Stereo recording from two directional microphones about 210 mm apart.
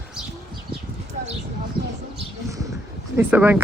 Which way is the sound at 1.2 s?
35° right (ahead or behind).